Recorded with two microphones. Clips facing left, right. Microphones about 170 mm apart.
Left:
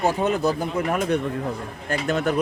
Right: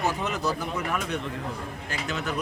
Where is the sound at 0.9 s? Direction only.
45° left (ahead or behind).